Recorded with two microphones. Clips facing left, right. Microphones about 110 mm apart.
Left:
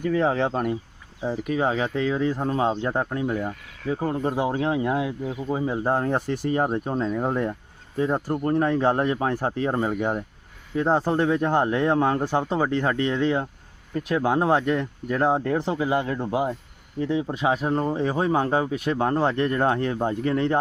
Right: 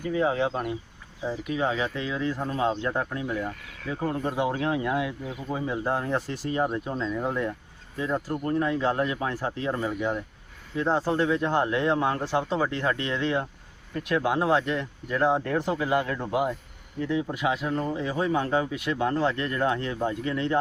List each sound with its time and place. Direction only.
0.0 s speech: 60° left (ahead or behind)
1.2 s speech: 35° left (ahead or behind)
3.4 s speech: 25° left (ahead or behind)
20.2 s speech: 50° left (ahead or behind)